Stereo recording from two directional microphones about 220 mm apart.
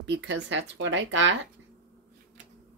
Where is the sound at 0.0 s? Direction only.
55° right (ahead or behind).